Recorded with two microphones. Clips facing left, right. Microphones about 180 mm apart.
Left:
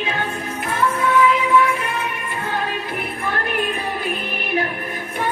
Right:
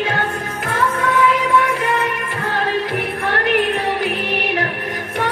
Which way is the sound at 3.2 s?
90° right.